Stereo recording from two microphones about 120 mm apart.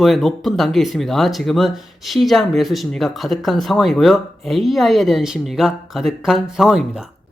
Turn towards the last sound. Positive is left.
turn(degrees=-5)  # may be behind; listen again after turning